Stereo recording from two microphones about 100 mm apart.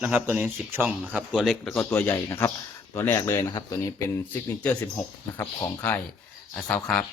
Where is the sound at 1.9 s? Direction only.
25° left (ahead or behind).